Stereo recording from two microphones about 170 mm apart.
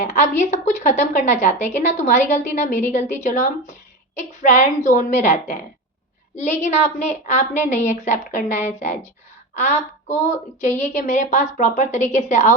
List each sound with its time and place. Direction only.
0.1 s a woman's voice: 45° left (ahead or behind)